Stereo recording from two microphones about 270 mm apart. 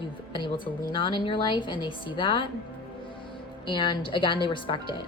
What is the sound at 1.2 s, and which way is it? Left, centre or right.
A woman's voice, centre.